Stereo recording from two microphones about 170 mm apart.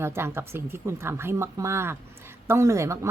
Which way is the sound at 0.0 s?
15° right (ahead or behind).